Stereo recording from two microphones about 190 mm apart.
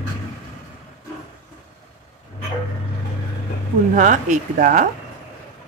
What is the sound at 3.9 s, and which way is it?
Speech, 40° right (ahead or behind).